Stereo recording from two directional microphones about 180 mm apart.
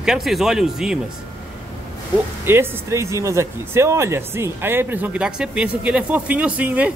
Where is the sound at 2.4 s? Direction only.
10° right (ahead or behind).